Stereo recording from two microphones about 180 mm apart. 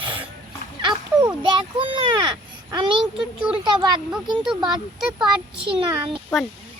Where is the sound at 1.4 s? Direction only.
30° right (ahead or behind).